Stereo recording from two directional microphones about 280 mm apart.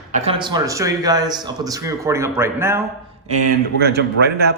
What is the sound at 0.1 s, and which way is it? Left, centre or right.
A man's voice, right.